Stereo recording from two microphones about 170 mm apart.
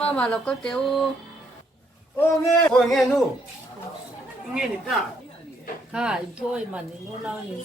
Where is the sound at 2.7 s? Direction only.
Centre (ahead or behind).